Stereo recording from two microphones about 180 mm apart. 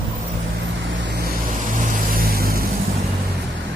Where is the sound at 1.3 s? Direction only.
50° right (ahead or behind).